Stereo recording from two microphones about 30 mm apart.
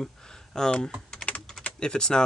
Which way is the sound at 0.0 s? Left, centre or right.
Centre.